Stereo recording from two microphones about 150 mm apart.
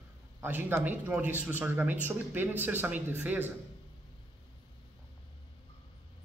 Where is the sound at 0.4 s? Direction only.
15° right (ahead or behind).